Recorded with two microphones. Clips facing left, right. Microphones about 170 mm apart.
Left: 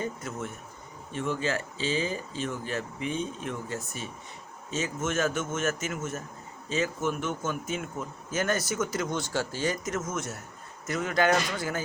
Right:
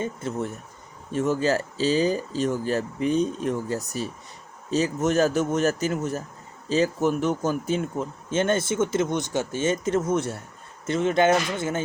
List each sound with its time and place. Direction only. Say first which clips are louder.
0.0 s speech: right 5 dB; 30° right (ahead or behind)